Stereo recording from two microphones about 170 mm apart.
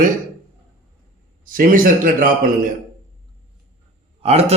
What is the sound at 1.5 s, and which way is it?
Speech, 55° right (ahead or behind).